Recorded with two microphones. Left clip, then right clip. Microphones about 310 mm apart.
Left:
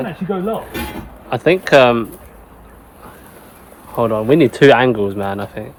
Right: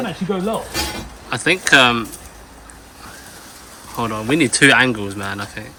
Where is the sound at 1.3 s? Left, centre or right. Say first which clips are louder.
Left 2 dB; centre.